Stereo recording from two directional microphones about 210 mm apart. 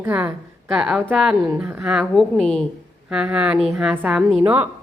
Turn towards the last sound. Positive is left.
turn(degrees=-5)  # may be behind; listen again after turning